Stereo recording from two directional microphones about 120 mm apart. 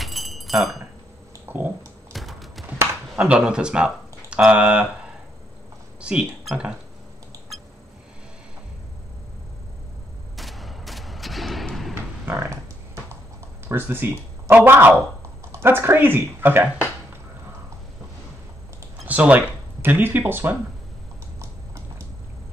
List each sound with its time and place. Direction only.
0.0 s keys jangling: centre (ahead or behind)
1.4 s a sound: 15° right (ahead or behind)
2.1 s clip-clop: centre (ahead or behind)
3.2 s speech: 10° right (ahead or behind)
5.9 s speech: 10° right (ahead or behind)
10.3 s a sound: centre (ahead or behind)
11.9 s dog: 20° right (ahead or behind)
13.7 s speech: 20° right (ahead or behind)
19.0 s speech: 15° right (ahead or behind)